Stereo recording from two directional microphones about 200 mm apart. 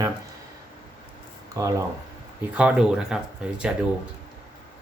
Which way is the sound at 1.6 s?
15° right (ahead or behind).